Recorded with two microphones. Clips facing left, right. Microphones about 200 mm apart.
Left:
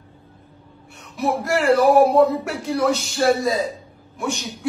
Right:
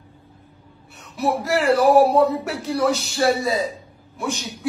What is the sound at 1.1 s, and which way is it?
Speech, centre (ahead or behind).